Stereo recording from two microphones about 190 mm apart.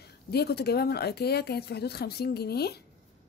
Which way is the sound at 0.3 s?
55° left (ahead or behind).